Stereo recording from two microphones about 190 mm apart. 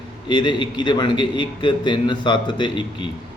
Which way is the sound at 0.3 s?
25° left (ahead or behind).